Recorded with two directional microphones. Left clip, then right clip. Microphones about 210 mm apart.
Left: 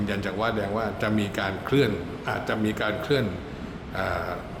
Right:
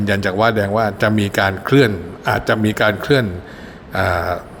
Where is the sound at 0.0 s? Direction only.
35° right (ahead or behind).